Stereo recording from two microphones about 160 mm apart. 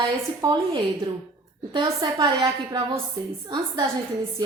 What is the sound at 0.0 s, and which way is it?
A woman's voice, 25° right (ahead or behind).